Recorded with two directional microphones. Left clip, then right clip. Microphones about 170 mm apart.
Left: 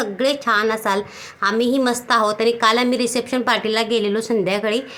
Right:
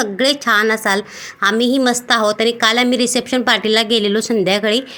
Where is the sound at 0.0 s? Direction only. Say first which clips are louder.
Right 3 dB; 20° right (ahead or behind).